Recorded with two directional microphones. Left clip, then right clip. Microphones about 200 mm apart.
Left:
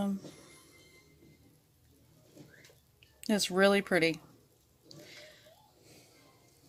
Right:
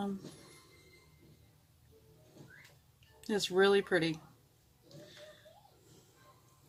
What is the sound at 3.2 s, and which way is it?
Speech, 45° left (ahead or behind).